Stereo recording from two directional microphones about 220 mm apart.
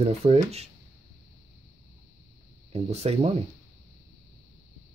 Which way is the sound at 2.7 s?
30° right (ahead or behind).